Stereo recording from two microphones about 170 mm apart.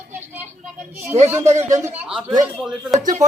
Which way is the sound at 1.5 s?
15° right (ahead or behind).